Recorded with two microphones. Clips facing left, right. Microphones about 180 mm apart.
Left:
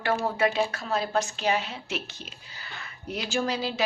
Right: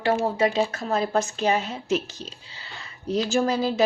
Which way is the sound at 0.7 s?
45° right (ahead or behind).